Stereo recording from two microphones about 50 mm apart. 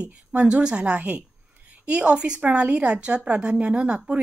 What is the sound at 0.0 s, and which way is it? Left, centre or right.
A woman's voice, right.